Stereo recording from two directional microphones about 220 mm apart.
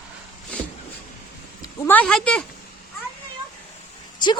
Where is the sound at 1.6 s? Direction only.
15° left (ahead or behind).